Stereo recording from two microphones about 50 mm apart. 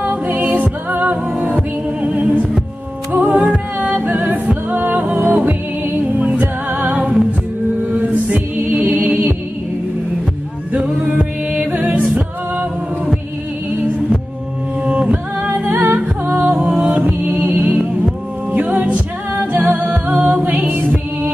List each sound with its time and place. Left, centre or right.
0.0 s music: right
6.1 s music: right
10.7 s music: right
14.9 s humming: right
15.9 s music: right
19.9 s a capella: right
20.6 s music: right